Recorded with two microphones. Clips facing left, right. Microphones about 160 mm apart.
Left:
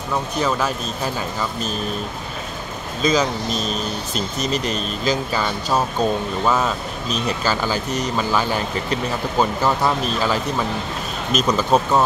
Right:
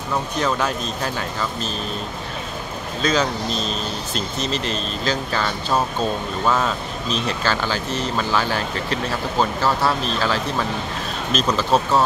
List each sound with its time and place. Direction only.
0.4 s speech: 5° left (ahead or behind)
3.0 s speech: 10° left (ahead or behind)